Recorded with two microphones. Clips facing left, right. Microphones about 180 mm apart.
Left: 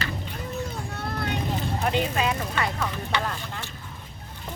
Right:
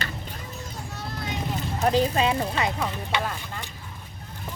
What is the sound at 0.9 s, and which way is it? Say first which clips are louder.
Vehicle: left 3 dB; 60° left (ahead or behind).